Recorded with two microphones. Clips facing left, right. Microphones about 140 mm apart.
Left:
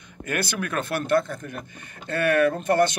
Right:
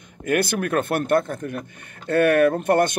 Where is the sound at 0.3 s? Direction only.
50° right (ahead or behind).